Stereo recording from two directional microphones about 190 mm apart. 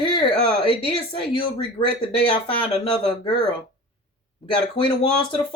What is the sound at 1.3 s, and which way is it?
Speech, 30° left (ahead or behind).